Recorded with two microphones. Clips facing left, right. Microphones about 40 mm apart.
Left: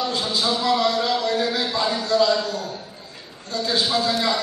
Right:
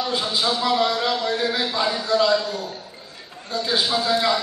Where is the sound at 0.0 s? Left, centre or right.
Centre.